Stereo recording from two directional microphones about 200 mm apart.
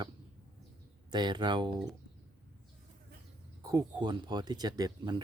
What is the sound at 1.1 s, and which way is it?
Speech, 20° right (ahead or behind).